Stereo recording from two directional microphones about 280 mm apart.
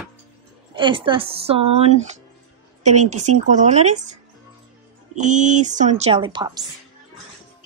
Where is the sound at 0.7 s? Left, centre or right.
Centre.